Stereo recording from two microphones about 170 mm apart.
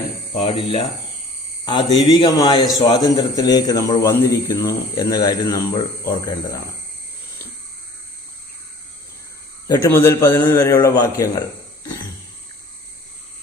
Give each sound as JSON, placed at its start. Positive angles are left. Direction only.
{"t": 0.3, "sound": "a man's voice", "side_deg": 35}
{"t": 9.6, "sound": "a man's voice", "side_deg": 20}